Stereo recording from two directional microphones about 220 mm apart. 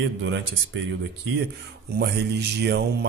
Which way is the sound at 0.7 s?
55° right (ahead or behind).